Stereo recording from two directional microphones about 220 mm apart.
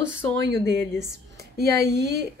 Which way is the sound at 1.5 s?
50° right (ahead or behind).